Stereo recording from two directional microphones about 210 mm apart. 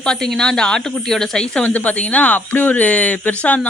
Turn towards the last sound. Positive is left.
turn(degrees=5)  # may be behind; listen again after turning